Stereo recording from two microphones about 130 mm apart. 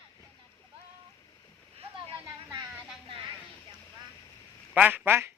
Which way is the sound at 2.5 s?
25° right (ahead or behind).